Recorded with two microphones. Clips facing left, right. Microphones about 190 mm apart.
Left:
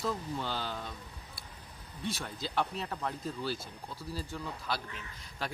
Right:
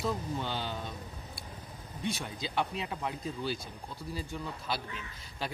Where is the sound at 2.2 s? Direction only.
15° right (ahead or behind).